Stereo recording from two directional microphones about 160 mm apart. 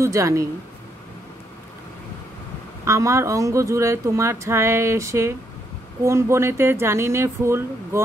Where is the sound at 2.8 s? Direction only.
20° right (ahead or behind).